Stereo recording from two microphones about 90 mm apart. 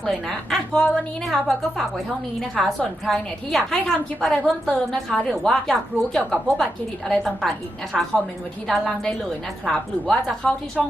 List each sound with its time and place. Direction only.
0.0 s a woman's voice: 5° left (ahead or behind)